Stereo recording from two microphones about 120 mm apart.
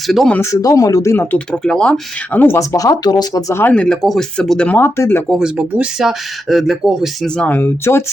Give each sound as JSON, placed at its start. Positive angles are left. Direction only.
{"t": 0.1, "sound": "speech", "side_deg": 0}
{"t": 0.3, "sound": "speech", "side_deg": 25}
{"t": 1.6, "sound": "speech", "side_deg": 5}
{"t": 3.5, "sound": "speech", "side_deg": 15}
{"t": 4.8, "sound": "speech", "side_deg": 20}
{"t": 5.3, "sound": "speech", "side_deg": -5}
{"t": 7.3, "sound": "speech", "side_deg": 15}